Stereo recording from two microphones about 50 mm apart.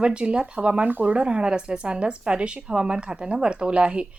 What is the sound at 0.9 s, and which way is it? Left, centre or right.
Speech, right.